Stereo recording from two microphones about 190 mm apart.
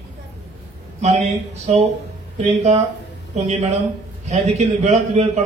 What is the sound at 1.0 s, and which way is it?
Speech, 35° right (ahead or behind).